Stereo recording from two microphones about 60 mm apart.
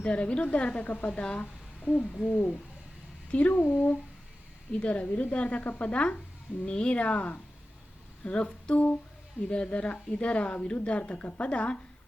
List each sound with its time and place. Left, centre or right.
0.0 s a woman's voice: centre